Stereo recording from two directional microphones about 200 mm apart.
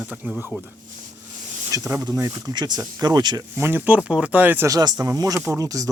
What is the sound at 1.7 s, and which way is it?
Speech, 15° right (ahead or behind).